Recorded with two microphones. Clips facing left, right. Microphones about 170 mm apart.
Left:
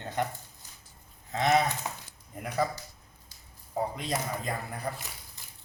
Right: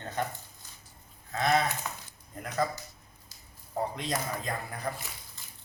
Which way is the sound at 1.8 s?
30° left (ahead or behind).